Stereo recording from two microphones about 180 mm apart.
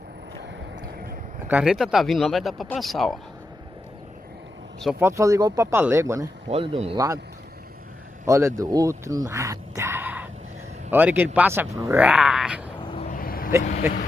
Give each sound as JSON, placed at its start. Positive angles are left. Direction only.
{"t": 1.5, "sound": "speech", "side_deg": -5}
{"t": 5.0, "sound": "speech", "side_deg": -15}
{"t": 6.5, "sound": "speech", "side_deg": -35}
{"t": 8.3, "sound": "speech", "side_deg": -15}
{"t": 13.1, "sound": "a sound", "side_deg": 55}